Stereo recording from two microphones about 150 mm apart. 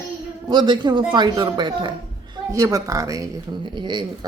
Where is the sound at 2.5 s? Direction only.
20° right (ahead or behind).